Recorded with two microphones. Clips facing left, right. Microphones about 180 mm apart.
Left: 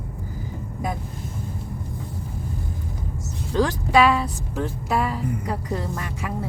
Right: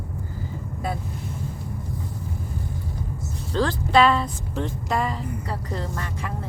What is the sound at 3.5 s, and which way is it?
Speech, 10° left (ahead or behind).